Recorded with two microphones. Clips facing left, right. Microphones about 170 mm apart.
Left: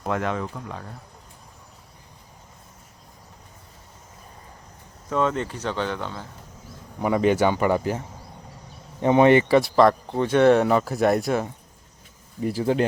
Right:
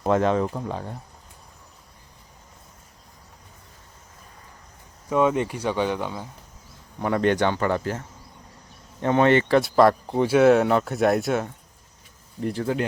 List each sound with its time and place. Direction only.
0.0 s speech: 30° right (ahead or behind)
5.0 s speech: 10° right (ahead or behind)
7.0 s speech: 5° left (ahead or behind)
9.6 s speech: centre (ahead or behind)